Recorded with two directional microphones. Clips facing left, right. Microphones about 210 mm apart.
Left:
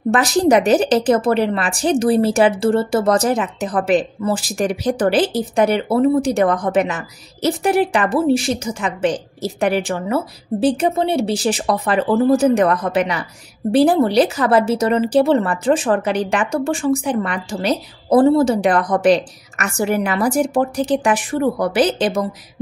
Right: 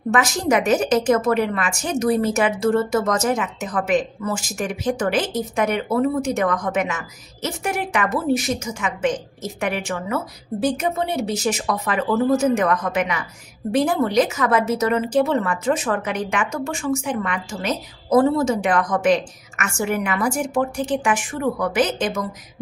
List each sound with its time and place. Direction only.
0.1 s a woman's voice: 35° left (ahead or behind)